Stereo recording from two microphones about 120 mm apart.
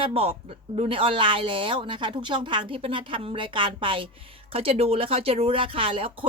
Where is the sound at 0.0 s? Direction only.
50° right (ahead or behind).